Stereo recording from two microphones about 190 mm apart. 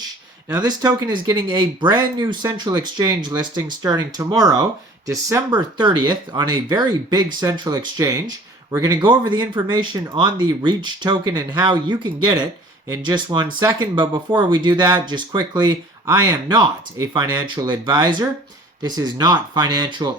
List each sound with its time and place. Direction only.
0.4 s speech: 20° right (ahead or behind)